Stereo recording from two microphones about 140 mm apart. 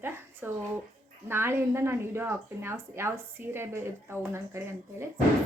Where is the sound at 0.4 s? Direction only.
15° right (ahead or behind).